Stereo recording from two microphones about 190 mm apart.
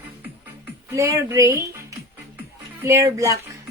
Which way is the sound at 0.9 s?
15° right (ahead or behind).